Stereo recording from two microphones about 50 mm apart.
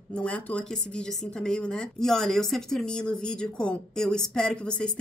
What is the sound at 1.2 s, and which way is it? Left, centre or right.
A woman's voice, centre.